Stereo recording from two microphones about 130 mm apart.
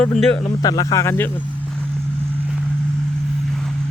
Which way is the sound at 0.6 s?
25° left (ahead or behind).